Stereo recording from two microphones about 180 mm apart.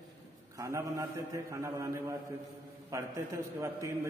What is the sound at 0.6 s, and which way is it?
A man's voice, 15° right (ahead or behind).